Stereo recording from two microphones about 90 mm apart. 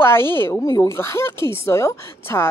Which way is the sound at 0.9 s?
30° left (ahead or behind).